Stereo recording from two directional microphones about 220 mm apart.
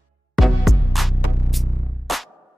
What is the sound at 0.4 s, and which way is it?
Music, centre (ahead or behind).